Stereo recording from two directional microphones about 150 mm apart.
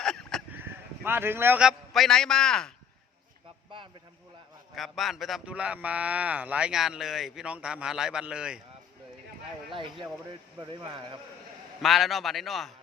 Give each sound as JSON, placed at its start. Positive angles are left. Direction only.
{"t": 0.0, "sound": "a sound", "side_deg": 5}
{"t": 0.5, "sound": "a man's voice", "side_deg": -15}
{"t": 4.7, "sound": "a man's voice", "side_deg": 0}
{"t": 9.7, "sound": "speech", "side_deg": -35}
{"t": 11.8, "sound": "a man's voice", "side_deg": 0}